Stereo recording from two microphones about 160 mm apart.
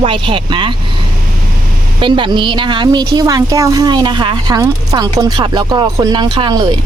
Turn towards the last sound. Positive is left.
turn(degrees=-30)  # may be behind; listen again after turning